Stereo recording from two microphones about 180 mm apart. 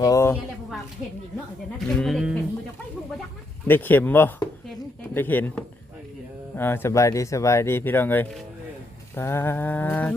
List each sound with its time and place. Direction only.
0.0 s speech: 15° left (ahead or behind)
2.0 s speech: centre (ahead or behind)
3.7 s speech: 10° left (ahead or behind)